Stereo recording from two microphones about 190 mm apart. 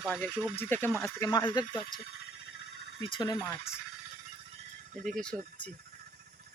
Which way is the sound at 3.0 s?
25° left (ahead or behind).